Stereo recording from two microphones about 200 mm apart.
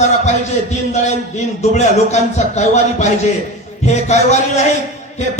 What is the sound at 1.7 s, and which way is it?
Speech, 35° left (ahead or behind).